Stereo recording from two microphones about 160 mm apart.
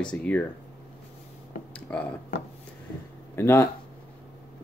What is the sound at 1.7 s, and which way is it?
Speech, 10° left (ahead or behind).